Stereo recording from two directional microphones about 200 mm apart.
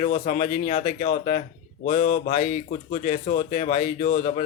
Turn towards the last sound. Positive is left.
turn(degrees=35)  # may be behind; listen again after turning